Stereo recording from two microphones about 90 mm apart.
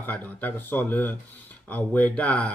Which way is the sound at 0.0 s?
20° left (ahead or behind).